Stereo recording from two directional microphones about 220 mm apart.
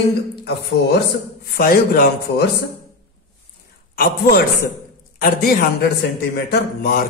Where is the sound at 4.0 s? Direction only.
40° left (ahead or behind).